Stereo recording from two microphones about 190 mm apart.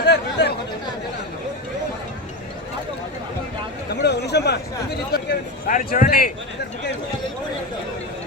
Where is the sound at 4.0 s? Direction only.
60° left (ahead or behind).